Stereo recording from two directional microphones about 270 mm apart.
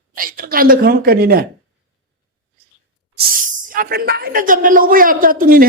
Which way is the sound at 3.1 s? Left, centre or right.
Right.